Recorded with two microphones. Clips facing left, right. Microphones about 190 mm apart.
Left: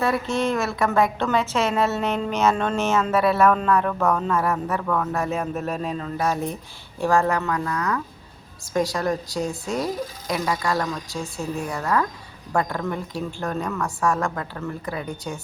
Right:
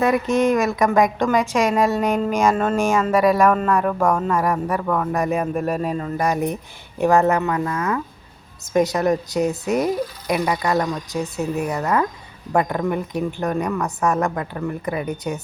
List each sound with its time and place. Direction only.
0.0 s a woman's voice: 15° right (ahead or behind)